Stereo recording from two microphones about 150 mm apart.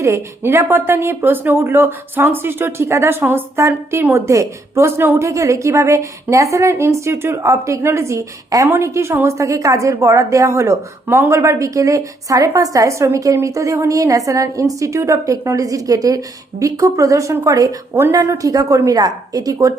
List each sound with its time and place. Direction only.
0.0 s a woman's voice: 15° right (ahead or behind)